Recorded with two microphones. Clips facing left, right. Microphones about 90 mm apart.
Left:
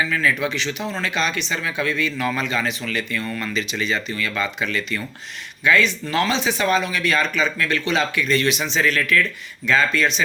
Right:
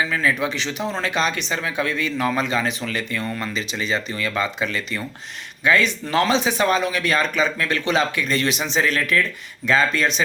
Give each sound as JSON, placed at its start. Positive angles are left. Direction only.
{"t": 0.1, "sound": "speech", "side_deg": -25}
{"t": 0.3, "sound": "speech", "side_deg": -35}